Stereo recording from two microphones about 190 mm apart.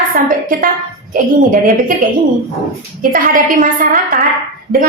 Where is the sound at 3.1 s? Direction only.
45° right (ahead or behind).